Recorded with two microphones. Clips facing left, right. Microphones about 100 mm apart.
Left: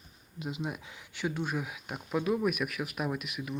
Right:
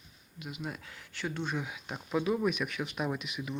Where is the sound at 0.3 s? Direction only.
30° left (ahead or behind).